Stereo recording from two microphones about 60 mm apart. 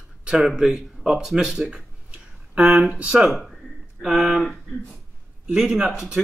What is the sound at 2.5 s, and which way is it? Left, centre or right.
Speech, right.